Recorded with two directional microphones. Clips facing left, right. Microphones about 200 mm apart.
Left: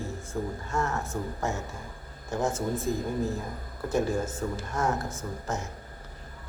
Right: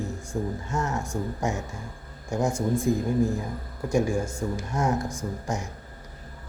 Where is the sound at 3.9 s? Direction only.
10° right (ahead or behind).